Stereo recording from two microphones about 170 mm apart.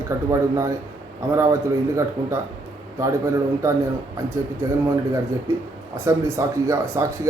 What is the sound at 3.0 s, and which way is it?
Speech, 20° right (ahead or behind).